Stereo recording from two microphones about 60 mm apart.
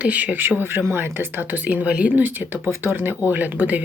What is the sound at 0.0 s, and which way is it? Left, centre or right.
Speech, right.